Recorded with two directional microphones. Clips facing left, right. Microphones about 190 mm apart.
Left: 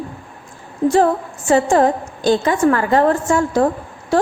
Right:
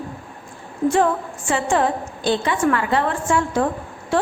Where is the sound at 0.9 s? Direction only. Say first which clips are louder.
Left 4 dB; 35° left (ahead or behind).